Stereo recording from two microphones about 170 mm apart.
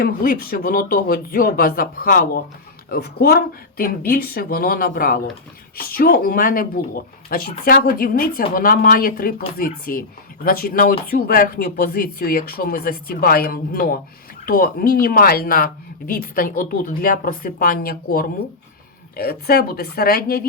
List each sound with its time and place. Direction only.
0.0 s speech: 60° left (ahead or behind)